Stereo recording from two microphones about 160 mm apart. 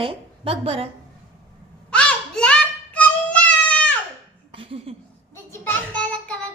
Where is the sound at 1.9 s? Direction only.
5° left (ahead or behind).